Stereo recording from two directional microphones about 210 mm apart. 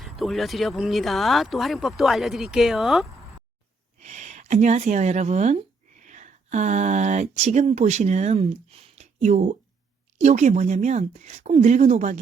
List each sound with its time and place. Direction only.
0.0 s speech: centre (ahead or behind)
4.0 s speech: 35° right (ahead or behind)